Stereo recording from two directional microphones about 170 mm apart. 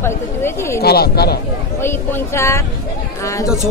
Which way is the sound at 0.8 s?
70° left (ahead or behind).